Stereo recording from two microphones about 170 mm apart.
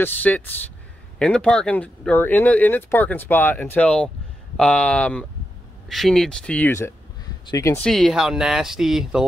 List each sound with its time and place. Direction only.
0.0 s speech: 10° left (ahead or behind)
7.8 s speech: centre (ahead or behind)